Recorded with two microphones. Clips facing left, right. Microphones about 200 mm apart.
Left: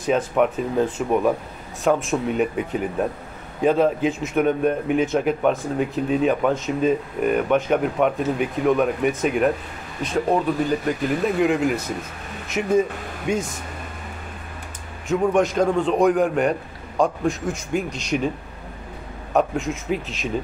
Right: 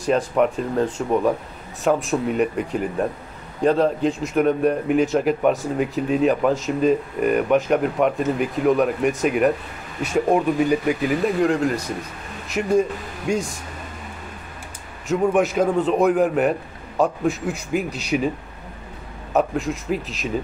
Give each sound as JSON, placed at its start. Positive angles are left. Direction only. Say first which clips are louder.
{"t": 0.0, "sound": "speech", "louder": "right 1 dB", "side_deg": 0}
{"t": 10.0, "sound": "speech", "louder": "right 2 dB", "side_deg": -10}
{"t": 15.0, "sound": "speech", "louder": "even", "side_deg": -5}
{"t": 19.3, "sound": "speech", "louder": "even", "side_deg": 0}